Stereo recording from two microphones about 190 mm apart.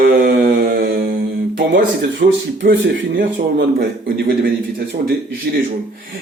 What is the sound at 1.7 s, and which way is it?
Speech, 65° right (ahead or behind).